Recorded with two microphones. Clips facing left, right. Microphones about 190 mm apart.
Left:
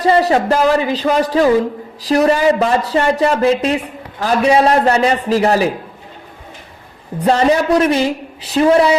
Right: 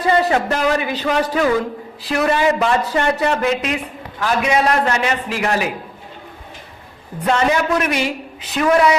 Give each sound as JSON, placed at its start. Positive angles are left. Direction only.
{"t": 0.0, "sound": "a man's voice", "side_deg": 35}
{"t": 7.2, "sound": "a man's voice", "side_deg": 35}